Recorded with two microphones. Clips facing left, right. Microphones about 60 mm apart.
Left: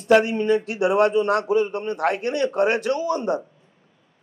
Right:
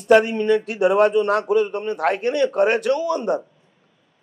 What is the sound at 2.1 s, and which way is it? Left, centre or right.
Speech, right.